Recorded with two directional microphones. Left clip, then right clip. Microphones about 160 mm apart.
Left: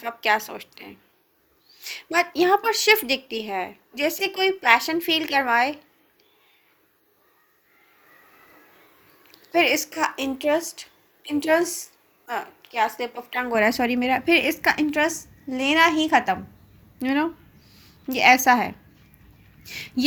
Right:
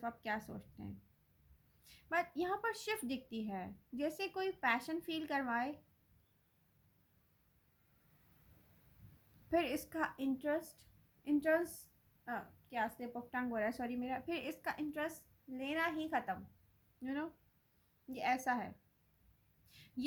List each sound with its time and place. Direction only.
0.0 s speech: 15° left (ahead or behind)
1.8 s speech: 15° left (ahead or behind)
9.5 s speech: 10° left (ahead or behind)